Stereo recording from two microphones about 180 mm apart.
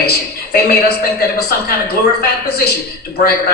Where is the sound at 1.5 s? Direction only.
60° left (ahead or behind).